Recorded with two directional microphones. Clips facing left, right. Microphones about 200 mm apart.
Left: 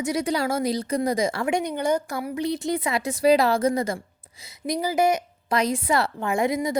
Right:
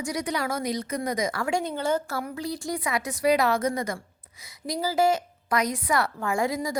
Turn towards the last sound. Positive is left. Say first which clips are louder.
# left 3 dB
turn(degrees=20)  # may be behind; listen again after turning